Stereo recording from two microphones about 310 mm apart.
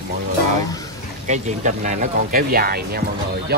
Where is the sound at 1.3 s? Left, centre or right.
Right.